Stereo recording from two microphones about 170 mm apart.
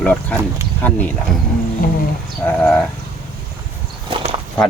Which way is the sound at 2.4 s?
10° left (ahead or behind).